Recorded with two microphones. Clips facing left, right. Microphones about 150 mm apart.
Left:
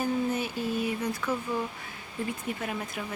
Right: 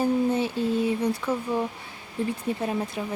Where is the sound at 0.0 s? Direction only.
30° right (ahead or behind).